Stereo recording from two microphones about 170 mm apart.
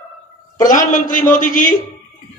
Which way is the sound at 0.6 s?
50° left (ahead or behind).